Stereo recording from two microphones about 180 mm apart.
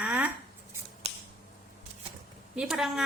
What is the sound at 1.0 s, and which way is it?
Finger snapping, 35° right (ahead or behind).